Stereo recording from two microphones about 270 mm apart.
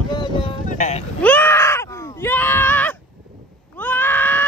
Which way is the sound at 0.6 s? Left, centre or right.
Left.